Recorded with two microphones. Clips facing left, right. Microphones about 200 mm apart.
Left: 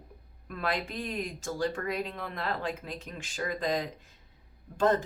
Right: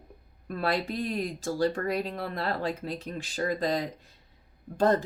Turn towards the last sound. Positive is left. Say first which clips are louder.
# right 2 dB
turn(degrees=-35)  # may be behind; listen again after turning